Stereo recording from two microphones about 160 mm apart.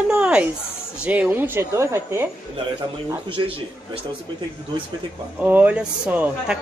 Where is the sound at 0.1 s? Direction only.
5° right (ahead or behind).